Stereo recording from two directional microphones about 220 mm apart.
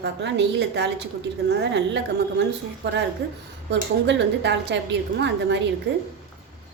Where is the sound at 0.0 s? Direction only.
55° right (ahead or behind).